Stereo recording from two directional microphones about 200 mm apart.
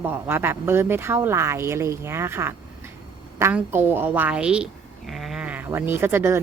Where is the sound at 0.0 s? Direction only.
10° right (ahead or behind).